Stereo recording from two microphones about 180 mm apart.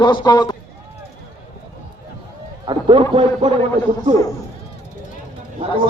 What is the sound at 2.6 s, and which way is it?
A man's voice, 30° right (ahead or behind).